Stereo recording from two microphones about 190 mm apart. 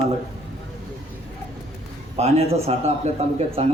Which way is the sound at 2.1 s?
30° right (ahead or behind).